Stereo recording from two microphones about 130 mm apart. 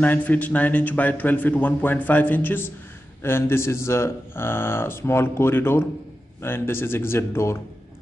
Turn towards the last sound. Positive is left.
turn(degrees=20)  # may be behind; listen again after turning